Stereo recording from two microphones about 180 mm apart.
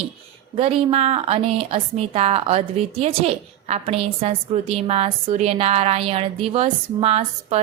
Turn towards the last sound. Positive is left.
turn(degrees=-35)  # may be behind; listen again after turning